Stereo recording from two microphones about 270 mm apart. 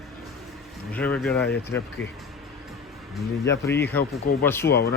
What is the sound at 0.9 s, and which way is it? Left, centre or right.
Speech, centre.